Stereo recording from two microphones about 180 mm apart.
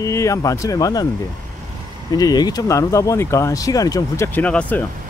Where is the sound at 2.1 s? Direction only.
20° left (ahead or behind).